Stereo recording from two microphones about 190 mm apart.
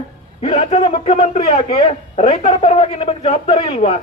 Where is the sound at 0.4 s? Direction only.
30° left (ahead or behind).